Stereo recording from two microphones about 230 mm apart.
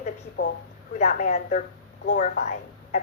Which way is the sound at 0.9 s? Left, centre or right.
Left.